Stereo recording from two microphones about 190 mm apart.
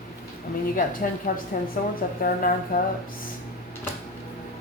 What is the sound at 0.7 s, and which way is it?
Speech, 45° left (ahead or behind).